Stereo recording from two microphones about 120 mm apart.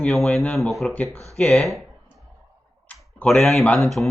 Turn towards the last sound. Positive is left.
turn(degrees=0)  # may be behind; listen again after turning